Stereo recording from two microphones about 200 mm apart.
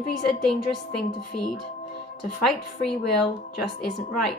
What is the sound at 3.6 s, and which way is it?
Speech, centre (ahead or behind).